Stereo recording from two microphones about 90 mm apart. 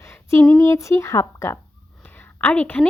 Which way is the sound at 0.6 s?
30° left (ahead or behind).